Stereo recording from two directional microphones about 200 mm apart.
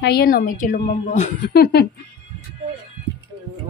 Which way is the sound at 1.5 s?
55° left (ahead or behind).